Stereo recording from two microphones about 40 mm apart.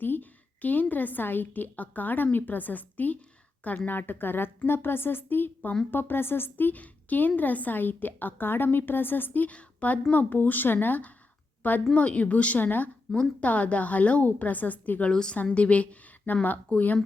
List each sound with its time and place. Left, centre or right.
0.0 s a woman's voice: left
6.7 s a woman's voice: left
9.5 s a woman's voice: left
10.1 s a woman's voice: left
11.6 s a woman's voice: left
13.1 s a woman's voice: centre
13.4 s a woman's voice: left
15.1 s a woman's voice: centre
15.5 s a woman's voice: left
16.2 s a woman's voice: left